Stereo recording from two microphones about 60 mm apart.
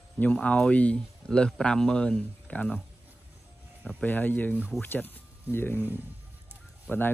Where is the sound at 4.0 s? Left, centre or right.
Left.